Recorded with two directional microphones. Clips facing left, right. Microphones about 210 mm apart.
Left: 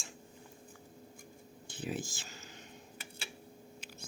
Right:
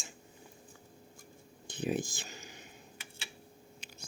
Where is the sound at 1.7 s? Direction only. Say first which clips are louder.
Right 5 dB; 15° right (ahead or behind).